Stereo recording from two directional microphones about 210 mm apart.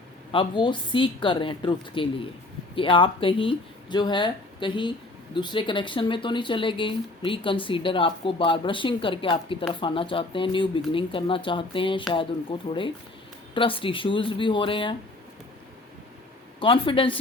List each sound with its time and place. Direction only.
0.3 s speech: 25° left (ahead or behind)
16.6 s speech: 25° left (ahead or behind)